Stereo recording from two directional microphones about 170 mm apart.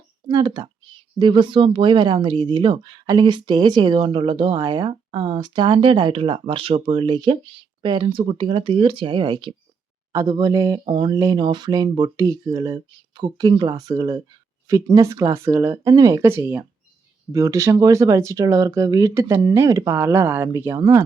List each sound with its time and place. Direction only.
0.3 s speech: 25° right (ahead or behind)